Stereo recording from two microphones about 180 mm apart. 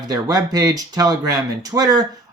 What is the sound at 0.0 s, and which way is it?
Speech, 20° right (ahead or behind).